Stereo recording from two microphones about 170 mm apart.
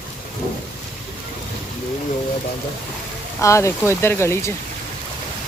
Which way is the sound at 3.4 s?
15° left (ahead or behind).